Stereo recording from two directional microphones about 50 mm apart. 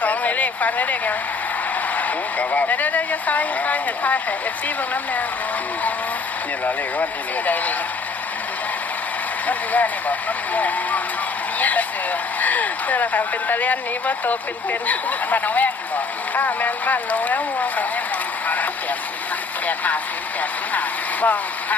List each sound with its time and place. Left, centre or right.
0.0 s a sound: left
2.0 s speech: left
6.7 s speech: left
9.5 s speech: left
18.4 s vehicle: left
19.6 s speech: left